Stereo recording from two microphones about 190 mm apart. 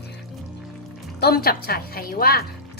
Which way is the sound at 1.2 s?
55° left (ahead or behind).